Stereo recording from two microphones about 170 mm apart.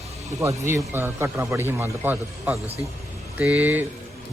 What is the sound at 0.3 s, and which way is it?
Speech, 15° right (ahead or behind).